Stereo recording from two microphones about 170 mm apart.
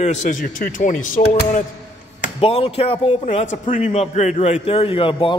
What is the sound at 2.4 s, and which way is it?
A man's voice, 35° left (ahead or behind).